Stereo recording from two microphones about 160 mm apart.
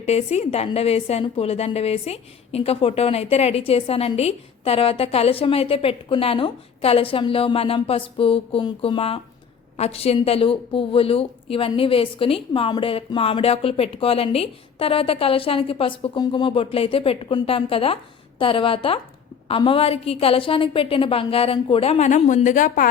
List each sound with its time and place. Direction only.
0.0 s a woman's voice: 40° left (ahead or behind)